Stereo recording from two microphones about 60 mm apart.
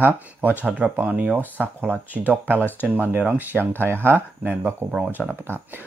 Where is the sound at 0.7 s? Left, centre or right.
Right.